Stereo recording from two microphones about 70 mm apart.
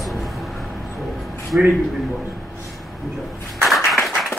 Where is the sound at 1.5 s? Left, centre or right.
Centre.